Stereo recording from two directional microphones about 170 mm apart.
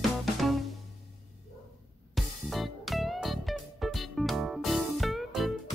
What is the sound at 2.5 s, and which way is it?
Music, centre (ahead or behind).